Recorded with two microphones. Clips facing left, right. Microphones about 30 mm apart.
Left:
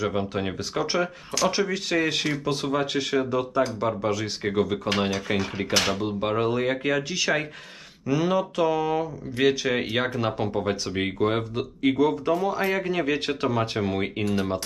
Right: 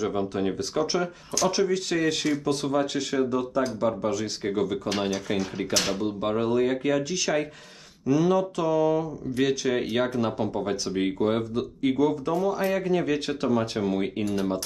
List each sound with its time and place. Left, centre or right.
0.0 s speech: left